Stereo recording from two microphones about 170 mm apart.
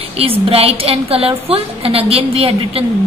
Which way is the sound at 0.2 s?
35° right (ahead or behind).